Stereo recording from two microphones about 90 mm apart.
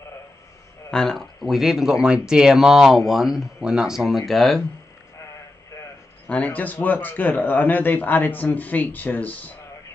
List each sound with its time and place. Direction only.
0.9 s speech: 5° left (ahead or behind)
6.2 s a man's voice: 15° left (ahead or behind)